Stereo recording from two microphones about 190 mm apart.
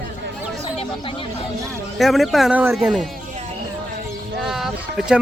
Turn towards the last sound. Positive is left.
turn(degrees=0)  # may be behind; listen again after turning